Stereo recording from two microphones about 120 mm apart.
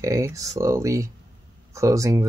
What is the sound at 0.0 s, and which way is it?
Speech, 25° right (ahead or behind).